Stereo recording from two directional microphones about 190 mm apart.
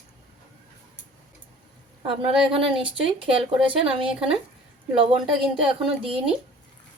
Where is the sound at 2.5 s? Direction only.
30° right (ahead or behind).